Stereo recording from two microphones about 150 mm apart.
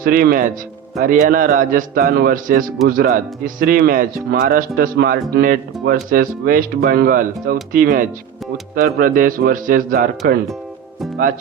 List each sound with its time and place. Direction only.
0.0 s speech: 75° right (ahead or behind)